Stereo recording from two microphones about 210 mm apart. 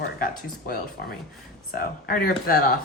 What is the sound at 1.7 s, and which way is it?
A woman's voice, 45° left (ahead or behind).